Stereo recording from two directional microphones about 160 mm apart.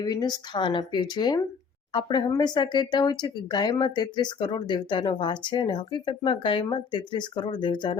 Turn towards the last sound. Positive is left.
turn(degrees=30)  # may be behind; listen again after turning